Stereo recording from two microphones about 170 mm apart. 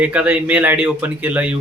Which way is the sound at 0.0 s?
5° right (ahead or behind).